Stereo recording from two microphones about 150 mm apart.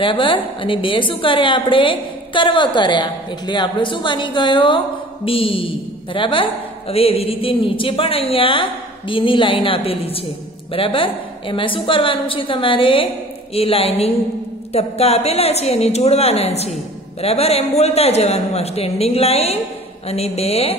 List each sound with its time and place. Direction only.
0.0 s a woman's voice: 35° left (ahead or behind)